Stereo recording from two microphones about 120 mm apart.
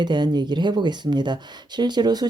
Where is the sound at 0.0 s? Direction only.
40° right (ahead or behind).